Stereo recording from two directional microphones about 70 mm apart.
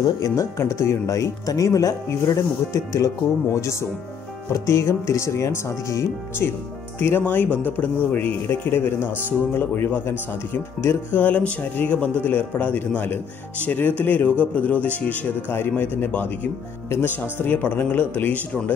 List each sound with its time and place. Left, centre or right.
0.0 s speech: left
0.6 s speech: left
4.5 s speech: left
7.0 s speech: left
17.4 s speech: left